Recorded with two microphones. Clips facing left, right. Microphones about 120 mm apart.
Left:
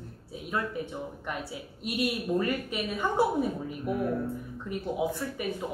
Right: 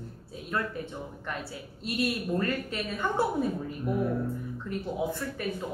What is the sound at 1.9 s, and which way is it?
A woman's voice, 15° left (ahead or behind).